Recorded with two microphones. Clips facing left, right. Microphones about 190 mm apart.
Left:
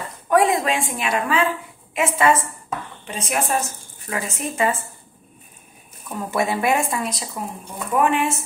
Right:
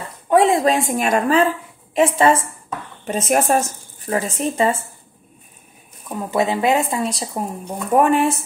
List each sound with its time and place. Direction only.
0.3 s speech: 25° right (ahead or behind)
3.1 s speech: 45° right (ahead or behind)
6.0 s speech: 15° right (ahead or behind); by 8.4 s 40° right (ahead or behind)